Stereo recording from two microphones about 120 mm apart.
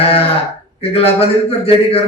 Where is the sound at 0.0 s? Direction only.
55° left (ahead or behind).